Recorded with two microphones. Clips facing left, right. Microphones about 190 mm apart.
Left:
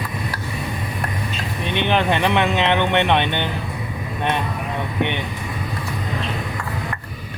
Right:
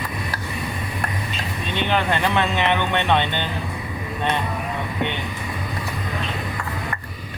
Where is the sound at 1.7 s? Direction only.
20° left (ahead or behind).